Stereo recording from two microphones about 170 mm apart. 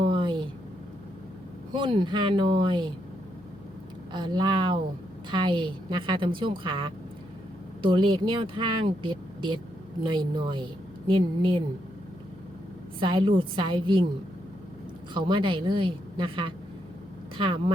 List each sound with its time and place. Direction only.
0.0 s a sound: 30° right (ahead or behind)
1.7 s speech: 30° right (ahead or behind)
4.1 s speech: 30° right (ahead or behind)
13.0 s speech: 30° right (ahead or behind)
15.1 s speech: 30° right (ahead or behind)